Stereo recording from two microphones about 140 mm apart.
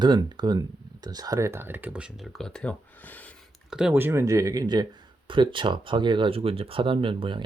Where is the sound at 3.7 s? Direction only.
5° right (ahead or behind).